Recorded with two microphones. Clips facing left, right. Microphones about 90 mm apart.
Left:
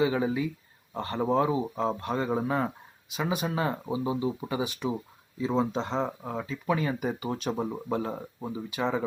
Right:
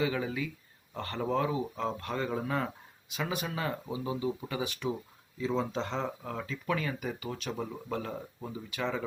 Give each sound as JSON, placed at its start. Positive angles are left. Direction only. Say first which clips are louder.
{"t": 0.0, "sound": "speech", "louder": "left 6 dB", "side_deg": 25}